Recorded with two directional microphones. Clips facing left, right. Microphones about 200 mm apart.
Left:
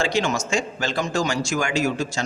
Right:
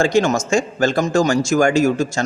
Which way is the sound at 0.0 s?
45° right (ahead or behind).